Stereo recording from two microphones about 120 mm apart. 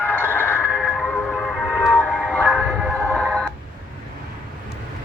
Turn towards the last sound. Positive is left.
turn(degrees=5)  # may be behind; listen again after turning